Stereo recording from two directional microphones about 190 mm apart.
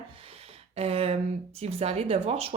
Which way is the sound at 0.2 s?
30° right (ahead or behind).